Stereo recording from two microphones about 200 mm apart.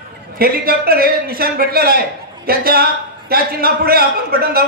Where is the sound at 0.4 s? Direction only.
50° right (ahead or behind).